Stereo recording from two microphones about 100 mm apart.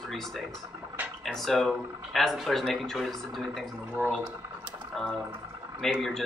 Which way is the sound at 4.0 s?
25° right (ahead or behind).